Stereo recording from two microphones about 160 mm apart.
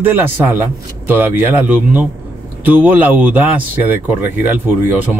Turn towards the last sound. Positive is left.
turn(degrees=-10)  # may be behind; listen again after turning